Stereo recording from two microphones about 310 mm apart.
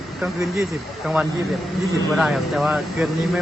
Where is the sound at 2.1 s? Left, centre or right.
Centre.